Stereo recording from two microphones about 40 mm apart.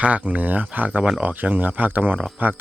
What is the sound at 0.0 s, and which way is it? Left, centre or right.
Speech, right.